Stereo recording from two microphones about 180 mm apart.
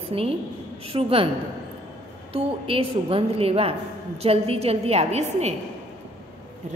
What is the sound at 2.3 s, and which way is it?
A woman's voice, 30° right (ahead or behind).